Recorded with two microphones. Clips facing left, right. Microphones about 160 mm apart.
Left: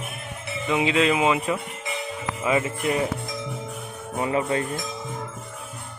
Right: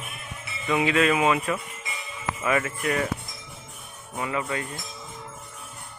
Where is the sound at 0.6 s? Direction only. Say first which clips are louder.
Left 1 dB; 20° left (ahead or behind).